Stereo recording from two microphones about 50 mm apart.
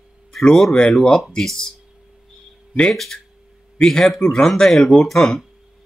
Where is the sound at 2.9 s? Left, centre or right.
Centre.